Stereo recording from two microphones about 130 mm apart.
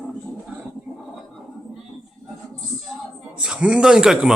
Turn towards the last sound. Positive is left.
turn(degrees=-5)  # may be behind; listen again after turning